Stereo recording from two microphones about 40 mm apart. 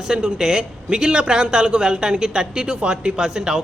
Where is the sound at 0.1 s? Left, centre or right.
Centre.